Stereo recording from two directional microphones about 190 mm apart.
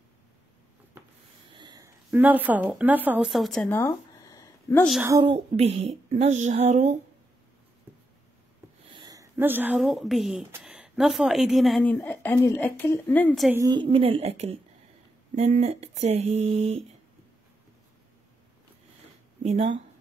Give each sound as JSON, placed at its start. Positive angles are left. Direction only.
{"t": 1.5, "sound": "wheeze", "side_deg": -20}
{"t": 2.0, "sound": "speech", "side_deg": -10}
{"t": 5.0, "sound": "a woman's voice", "side_deg": -20}
{"t": 5.3, "sound": "speech", "side_deg": -30}
{"t": 8.9, "sound": "a woman's voice", "side_deg": -20}
{"t": 13.5, "sound": "a woman's voice", "side_deg": -20}
{"t": 19.4, "sound": "speech", "side_deg": -40}